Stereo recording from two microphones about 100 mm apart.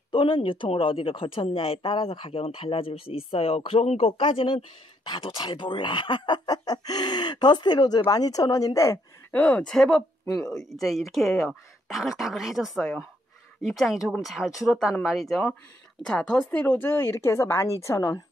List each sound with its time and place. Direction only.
0.1 s speech: 55° left (ahead or behind); by 9.0 s 30° left (ahead or behind)
9.3 s speech: 15° left (ahead or behind)
16.5 s a woman's voice: 20° left (ahead or behind)